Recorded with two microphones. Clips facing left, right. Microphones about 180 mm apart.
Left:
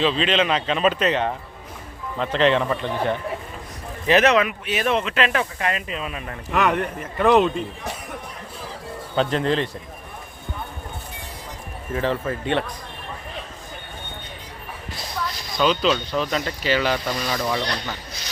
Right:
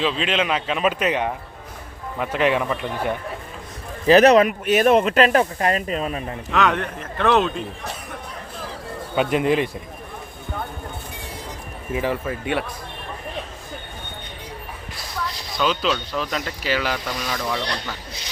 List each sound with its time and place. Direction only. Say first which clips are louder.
0.0 s speech: left 2 dB; 5° right (ahead or behind)
4.0 s speech: right 5 dB; 35° right (ahead or behind)
6.5 s a man's voice: even; 10° left (ahead or behind)
9.1 s speech: right 2 dB; 10° right (ahead or behind)
11.9 s speech: even; 10° right (ahead or behind)
15.5 s speech: left 2 dB; 5° right (ahead or behind)
17.3 s a man's voice: even; 10° left (ahead or behind)